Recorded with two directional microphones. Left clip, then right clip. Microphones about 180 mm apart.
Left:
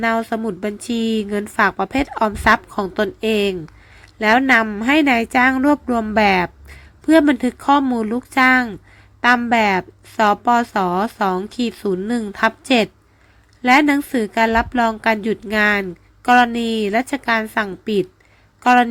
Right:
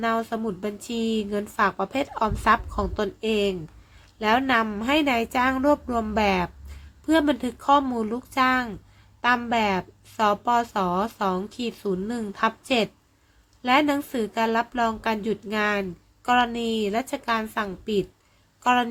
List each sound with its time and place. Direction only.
0.0 s a woman's voice: 30° left (ahead or behind)